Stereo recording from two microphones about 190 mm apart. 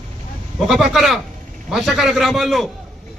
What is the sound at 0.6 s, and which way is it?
A man's voice, centre (ahead or behind).